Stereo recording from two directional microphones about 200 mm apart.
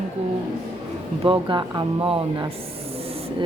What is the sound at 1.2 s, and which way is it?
Speech, 25° right (ahead or behind).